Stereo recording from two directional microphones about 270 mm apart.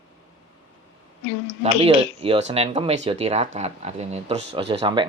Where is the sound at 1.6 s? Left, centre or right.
Right.